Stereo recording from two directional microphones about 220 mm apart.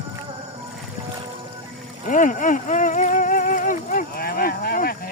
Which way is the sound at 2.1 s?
35° left (ahead or behind).